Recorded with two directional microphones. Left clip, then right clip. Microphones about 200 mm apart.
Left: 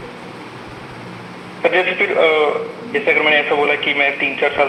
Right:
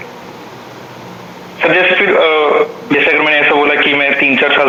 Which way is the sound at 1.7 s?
65° right (ahead or behind).